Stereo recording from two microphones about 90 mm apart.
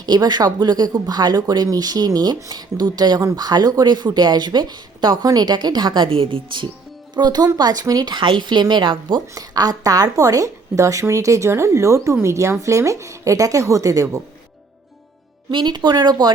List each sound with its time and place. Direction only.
0.0 s speech: 50° right (ahead or behind); by 6.7 s 75° right (ahead or behind)
7.2 s speech: 50° right (ahead or behind)
8.1 s a woman's voice: 60° right (ahead or behind)
9.3 s speech: 40° right (ahead or behind)
15.4 s a woman's voice: 55° right (ahead or behind)